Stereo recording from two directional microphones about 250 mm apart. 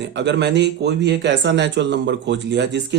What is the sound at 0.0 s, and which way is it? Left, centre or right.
Speech, right.